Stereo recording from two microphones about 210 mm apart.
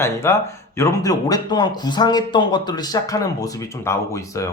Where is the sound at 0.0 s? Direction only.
15° left (ahead or behind).